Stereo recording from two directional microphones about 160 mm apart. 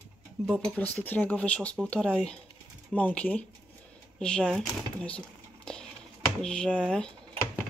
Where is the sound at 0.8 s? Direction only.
10° left (ahead or behind).